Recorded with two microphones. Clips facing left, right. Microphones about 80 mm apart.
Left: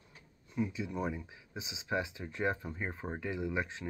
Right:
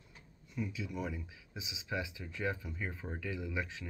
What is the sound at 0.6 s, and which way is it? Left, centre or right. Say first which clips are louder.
Speech: left 4 dB; left.